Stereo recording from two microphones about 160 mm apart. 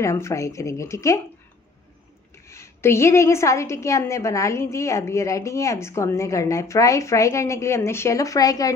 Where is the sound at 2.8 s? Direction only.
15° left (ahead or behind).